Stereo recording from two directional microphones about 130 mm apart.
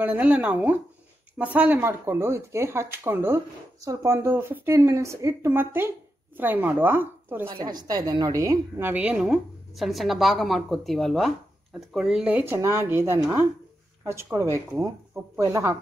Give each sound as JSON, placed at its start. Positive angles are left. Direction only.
{"t": 0.0, "sound": "speech", "side_deg": -10}
{"t": 7.4, "sound": "a woman's voice", "side_deg": -35}